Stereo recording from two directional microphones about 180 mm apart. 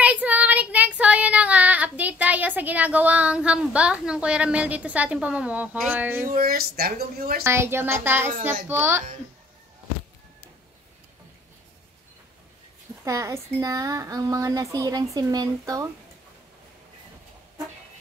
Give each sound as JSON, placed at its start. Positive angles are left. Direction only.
{"t": 0.0, "sound": "child singing", "side_deg": -10}
{"t": 6.3, "sound": "speech", "side_deg": -55}
{"t": 7.4, "sound": "speech", "side_deg": -15}
{"t": 13.0, "sound": "speech", "side_deg": -15}